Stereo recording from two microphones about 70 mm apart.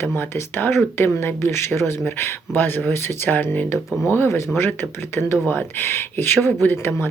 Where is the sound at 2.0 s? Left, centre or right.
Left.